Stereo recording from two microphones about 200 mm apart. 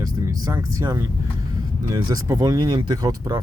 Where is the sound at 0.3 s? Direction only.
15° right (ahead or behind).